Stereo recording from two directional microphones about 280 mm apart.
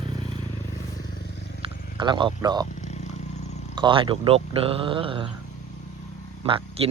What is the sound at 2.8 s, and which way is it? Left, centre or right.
Vehicle, left.